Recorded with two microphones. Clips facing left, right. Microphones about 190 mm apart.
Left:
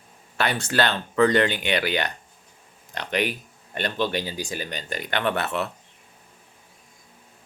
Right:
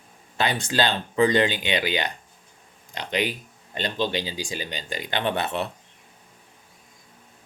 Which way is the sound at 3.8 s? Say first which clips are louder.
Left 1 dB; 20° right (ahead or behind).